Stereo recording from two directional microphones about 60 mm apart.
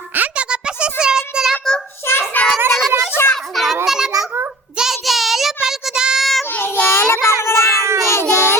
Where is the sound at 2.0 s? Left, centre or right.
Left.